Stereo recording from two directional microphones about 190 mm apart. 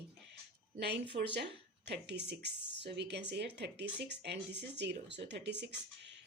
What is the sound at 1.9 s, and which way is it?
Speech, 60° right (ahead or behind).